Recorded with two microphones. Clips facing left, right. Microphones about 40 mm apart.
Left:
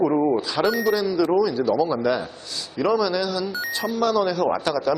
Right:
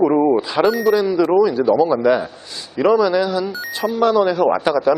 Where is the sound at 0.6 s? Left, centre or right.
Centre.